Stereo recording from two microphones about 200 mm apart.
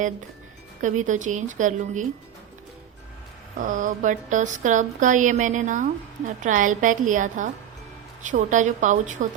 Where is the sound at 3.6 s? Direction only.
40° right (ahead or behind).